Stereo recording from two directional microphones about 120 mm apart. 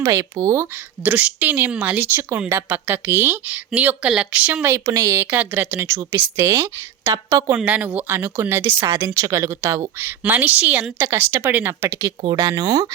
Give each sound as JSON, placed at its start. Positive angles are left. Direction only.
{"t": 0.0, "sound": "speech", "side_deg": -30}
{"t": 1.0, "sound": "speech", "side_deg": -10}
{"t": 4.7, "sound": "speech", "side_deg": -25}
{"t": 7.5, "sound": "speech", "side_deg": -15}